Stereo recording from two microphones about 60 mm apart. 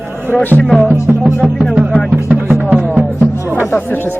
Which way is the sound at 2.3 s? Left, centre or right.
Right.